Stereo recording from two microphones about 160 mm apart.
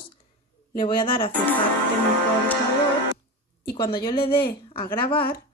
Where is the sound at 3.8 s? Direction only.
30° left (ahead or behind).